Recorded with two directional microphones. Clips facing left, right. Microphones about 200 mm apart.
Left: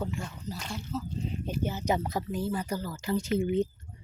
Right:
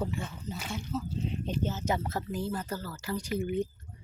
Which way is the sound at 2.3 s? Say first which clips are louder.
Left 2 dB; centre (ahead or behind).